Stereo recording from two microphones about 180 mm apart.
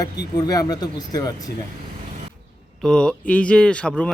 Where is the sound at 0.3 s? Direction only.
20° left (ahead or behind).